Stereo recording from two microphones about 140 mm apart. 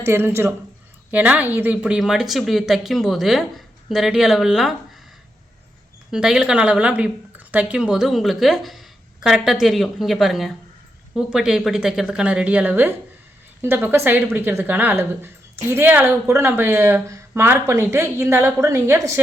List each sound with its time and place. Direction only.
0.0 s speech: 15° right (ahead or behind)
6.1 s speech: 5° right (ahead or behind); by 19.2 s 20° right (ahead or behind)